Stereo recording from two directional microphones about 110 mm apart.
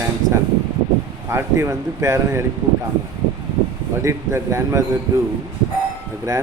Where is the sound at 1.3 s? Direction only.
25° right (ahead or behind).